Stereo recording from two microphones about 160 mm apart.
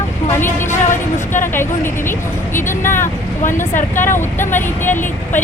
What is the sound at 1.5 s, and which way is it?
Speech, 15° left (ahead or behind).